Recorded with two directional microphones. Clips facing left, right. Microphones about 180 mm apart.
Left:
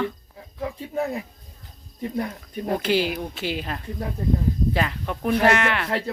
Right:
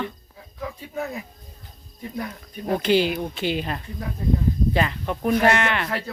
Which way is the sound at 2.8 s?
5° left (ahead or behind).